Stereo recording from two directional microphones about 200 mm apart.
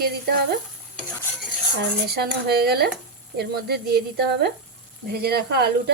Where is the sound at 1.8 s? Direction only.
50° right (ahead or behind).